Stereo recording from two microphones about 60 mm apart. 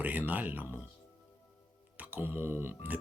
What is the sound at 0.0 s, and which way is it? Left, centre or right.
Speech, right.